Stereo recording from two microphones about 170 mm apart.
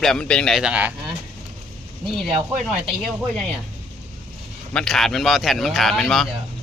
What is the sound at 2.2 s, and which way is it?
Speech, centre (ahead or behind).